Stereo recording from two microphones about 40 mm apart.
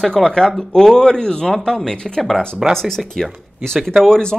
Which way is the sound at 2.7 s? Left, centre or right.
Centre.